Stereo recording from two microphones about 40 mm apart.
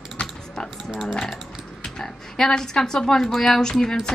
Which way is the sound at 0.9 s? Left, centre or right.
Centre.